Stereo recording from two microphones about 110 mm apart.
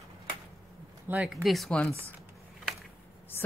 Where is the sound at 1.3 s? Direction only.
Centre (ahead or behind).